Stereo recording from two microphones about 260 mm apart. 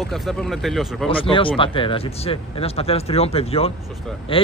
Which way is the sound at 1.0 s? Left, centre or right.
Centre.